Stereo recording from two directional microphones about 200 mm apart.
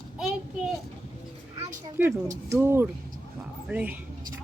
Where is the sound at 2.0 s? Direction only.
10° right (ahead or behind).